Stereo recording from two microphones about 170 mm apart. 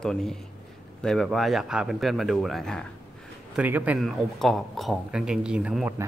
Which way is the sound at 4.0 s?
Centre (ahead or behind).